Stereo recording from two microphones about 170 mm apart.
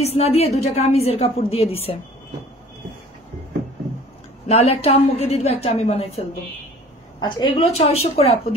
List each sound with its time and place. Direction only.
0.0 s a woman's voice: 40° left (ahead or behind)
4.5 s a woman's voice: 40° left (ahead or behind)
7.2 s a woman's voice: 25° left (ahead or behind)